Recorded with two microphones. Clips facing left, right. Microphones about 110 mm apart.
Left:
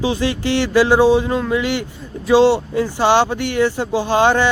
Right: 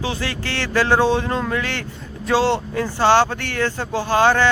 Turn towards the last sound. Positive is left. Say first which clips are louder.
# left 2 dB
turn(degrees=20)  # may be behind; listen again after turning